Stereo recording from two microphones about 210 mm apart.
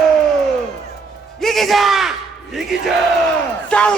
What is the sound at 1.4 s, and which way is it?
Battle cry, centre (ahead or behind).